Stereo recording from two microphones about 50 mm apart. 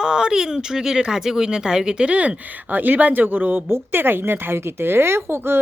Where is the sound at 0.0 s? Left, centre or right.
Centre.